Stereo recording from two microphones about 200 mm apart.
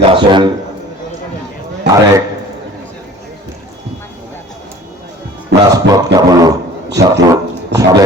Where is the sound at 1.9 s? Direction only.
60° right (ahead or behind).